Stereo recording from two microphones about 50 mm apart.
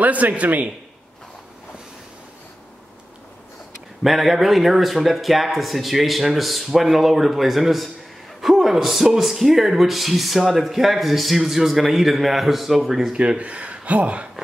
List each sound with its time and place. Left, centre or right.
0.0 s a man's voice: right
4.0 s speech: centre
13.2 s speech: right